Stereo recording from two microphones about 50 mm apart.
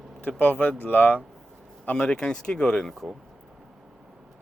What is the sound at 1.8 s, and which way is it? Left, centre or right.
Speech, left.